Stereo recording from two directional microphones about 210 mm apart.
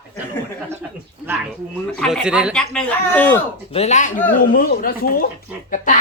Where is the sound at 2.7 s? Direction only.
5° left (ahead or behind).